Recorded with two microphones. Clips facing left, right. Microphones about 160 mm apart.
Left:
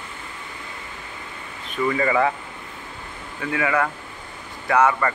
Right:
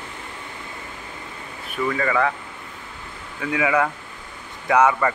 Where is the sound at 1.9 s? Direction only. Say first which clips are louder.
Left 2 dB; 10° left (ahead or behind).